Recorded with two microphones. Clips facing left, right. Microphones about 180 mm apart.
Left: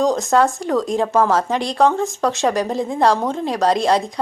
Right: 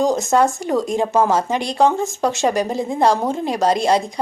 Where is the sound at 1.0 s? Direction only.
20° right (ahead or behind).